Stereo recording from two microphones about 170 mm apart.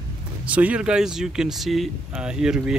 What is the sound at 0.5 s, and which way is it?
Speech, 10° right (ahead or behind).